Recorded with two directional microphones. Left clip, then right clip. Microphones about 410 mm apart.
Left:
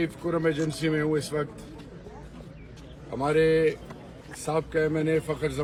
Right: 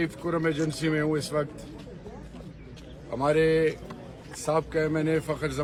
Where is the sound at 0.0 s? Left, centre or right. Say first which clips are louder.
Left 1 dB; centre.